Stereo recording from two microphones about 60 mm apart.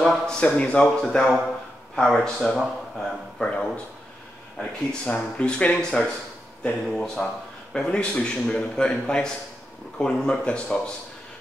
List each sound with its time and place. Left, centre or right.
0.0 s a man's voice: centre
0.5 s a man's voice: left; by 3.4 s centre
3.4 s a man's voice: centre